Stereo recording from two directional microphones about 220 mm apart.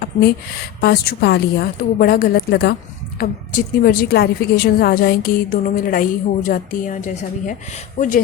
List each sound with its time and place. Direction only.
0.0 s a woman's voice: 45° left (ahead or behind)